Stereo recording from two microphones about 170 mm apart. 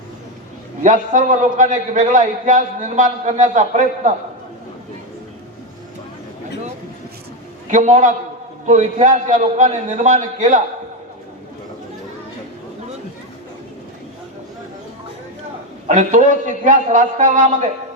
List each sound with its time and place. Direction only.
0.8 s a man's voice: 50° right (ahead or behind)
7.7 s a man's voice: 45° right (ahead or behind)
15.9 s a man's voice: 50° right (ahead or behind)